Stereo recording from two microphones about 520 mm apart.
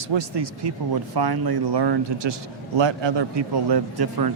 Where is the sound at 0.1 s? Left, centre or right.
Right.